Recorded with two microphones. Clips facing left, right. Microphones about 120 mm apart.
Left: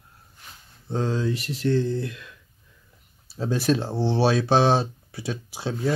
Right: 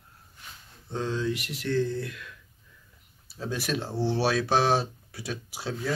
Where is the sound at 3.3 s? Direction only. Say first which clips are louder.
Left 7 dB; 30° left (ahead or behind).